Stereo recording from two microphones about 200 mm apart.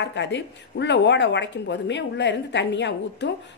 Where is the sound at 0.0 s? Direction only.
60° left (ahead or behind).